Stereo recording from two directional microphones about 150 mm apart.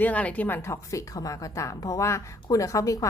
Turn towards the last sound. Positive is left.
turn(degrees=20)  # may be behind; listen again after turning